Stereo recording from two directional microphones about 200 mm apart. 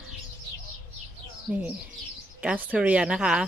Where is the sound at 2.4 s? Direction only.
5° right (ahead or behind).